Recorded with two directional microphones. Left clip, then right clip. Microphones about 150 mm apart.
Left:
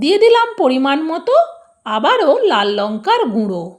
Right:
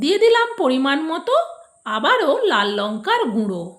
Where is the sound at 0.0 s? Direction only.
35° left (ahead or behind).